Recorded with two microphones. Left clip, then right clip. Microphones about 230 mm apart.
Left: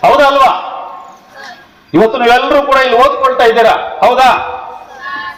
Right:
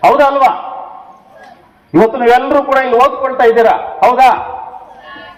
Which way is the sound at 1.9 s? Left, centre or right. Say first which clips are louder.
Left 1 dB; left.